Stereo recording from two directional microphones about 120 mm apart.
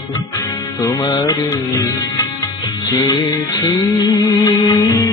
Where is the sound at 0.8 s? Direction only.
35° left (ahead or behind).